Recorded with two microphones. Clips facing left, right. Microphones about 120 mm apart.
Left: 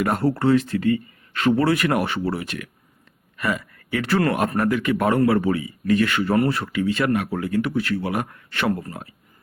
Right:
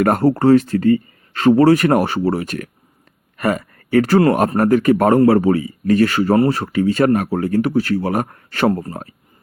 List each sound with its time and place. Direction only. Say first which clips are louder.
0.0 s a man's voice: right 6 dB; 45° right (ahead or behind)